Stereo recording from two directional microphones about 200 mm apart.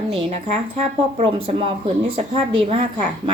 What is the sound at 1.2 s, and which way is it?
A woman's voice, 25° right (ahead or behind).